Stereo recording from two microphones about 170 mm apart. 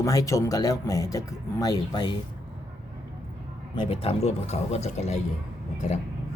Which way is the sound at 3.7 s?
35° left (ahead or behind).